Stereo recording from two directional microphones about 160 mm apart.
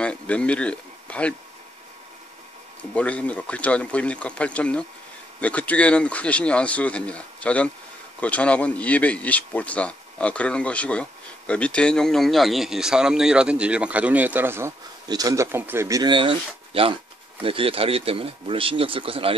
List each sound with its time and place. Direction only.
0.0 s speech: 5° left (ahead or behind)
2.8 s speech: 10° left (ahead or behind); by 19.3 s 35° right (ahead or behind)